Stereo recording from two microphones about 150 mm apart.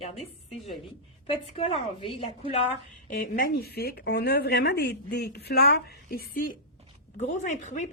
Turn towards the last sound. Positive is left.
turn(degrees=55)  # may be behind; listen again after turning